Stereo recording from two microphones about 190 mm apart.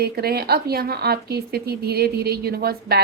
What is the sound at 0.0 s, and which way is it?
A woman's voice, 55° right (ahead or behind).